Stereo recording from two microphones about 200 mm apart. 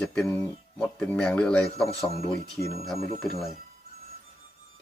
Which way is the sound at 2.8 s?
Centre (ahead or behind).